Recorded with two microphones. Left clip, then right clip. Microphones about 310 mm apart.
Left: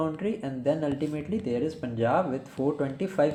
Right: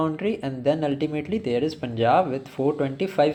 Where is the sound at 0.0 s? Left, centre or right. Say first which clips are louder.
Right 5 dB; centre.